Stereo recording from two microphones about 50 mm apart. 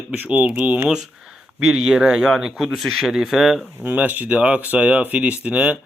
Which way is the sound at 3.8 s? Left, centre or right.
Right.